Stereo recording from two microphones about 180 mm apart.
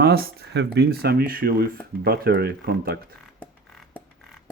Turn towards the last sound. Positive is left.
turn(degrees=5)  # may be behind; listen again after turning